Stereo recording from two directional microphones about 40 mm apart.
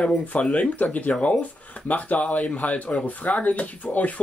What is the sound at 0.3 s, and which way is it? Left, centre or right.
Speech, left.